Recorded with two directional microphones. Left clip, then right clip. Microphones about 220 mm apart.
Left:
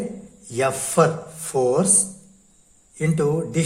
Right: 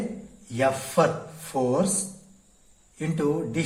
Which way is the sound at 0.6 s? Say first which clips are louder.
Left 3 dB; 50° left (ahead or behind).